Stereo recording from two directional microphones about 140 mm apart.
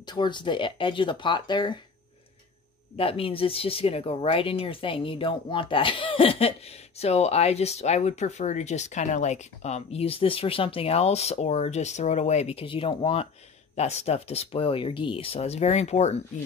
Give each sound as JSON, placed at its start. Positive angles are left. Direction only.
{"t": 0.0, "sound": "speech", "side_deg": 35}
{"t": 3.0, "sound": "speech", "side_deg": 40}